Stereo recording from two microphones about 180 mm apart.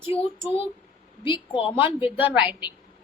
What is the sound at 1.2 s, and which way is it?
Speech, 30° left (ahead or behind).